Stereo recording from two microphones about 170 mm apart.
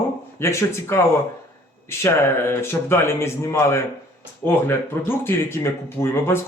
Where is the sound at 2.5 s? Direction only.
15° left (ahead or behind).